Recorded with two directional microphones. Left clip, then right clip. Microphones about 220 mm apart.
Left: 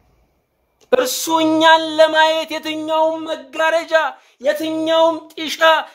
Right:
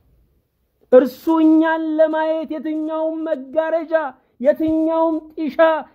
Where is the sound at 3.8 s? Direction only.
25° right (ahead or behind).